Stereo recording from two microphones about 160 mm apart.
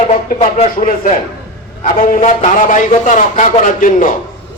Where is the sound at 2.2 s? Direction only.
50° left (ahead or behind).